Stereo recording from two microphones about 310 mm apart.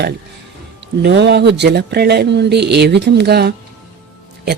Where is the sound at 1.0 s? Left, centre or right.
Right.